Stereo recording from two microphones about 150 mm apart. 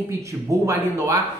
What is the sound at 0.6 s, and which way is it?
Speech, 20° right (ahead or behind).